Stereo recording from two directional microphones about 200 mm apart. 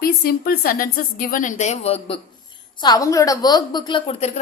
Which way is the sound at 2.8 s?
20° left (ahead or behind).